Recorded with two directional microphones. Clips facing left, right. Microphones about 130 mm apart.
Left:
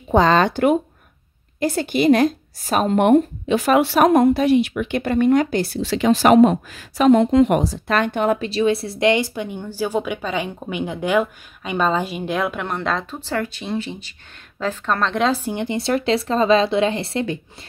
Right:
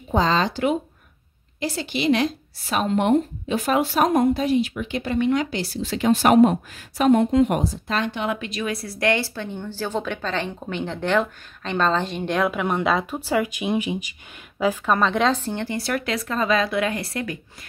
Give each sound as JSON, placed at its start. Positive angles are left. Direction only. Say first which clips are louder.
{"t": 0.1, "sound": "speech", "louder": "left 5 dB", "side_deg": 60}